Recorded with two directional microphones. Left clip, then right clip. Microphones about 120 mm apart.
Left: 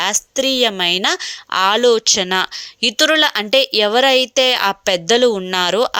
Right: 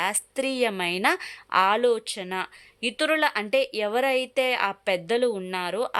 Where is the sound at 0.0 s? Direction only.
30° left (ahead or behind).